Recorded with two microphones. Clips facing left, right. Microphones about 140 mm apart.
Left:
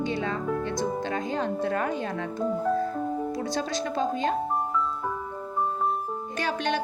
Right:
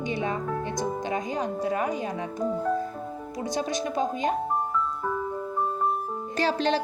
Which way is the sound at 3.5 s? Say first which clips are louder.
Right 4 dB; 15° right (ahead or behind).